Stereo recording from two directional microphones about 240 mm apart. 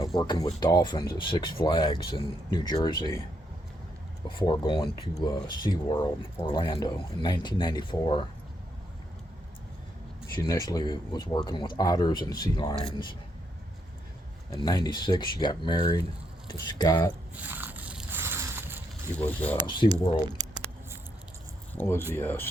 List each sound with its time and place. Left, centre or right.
0.0 s speech: centre
4.4 s speech: centre
10.3 s speech: centre
14.5 s speech: centre
17.3 s a sound: centre
19.2 s speech: centre
19.6 s speech: centre
20.4 s a sound: centre
21.8 s speech: centre